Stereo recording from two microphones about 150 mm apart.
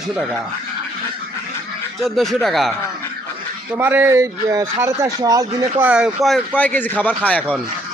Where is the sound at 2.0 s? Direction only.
Centre (ahead or behind).